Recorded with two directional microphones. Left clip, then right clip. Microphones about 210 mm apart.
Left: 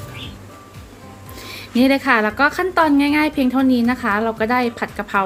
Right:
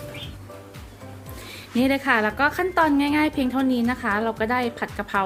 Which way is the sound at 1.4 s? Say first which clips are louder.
Left 6 dB; centre (ahead or behind).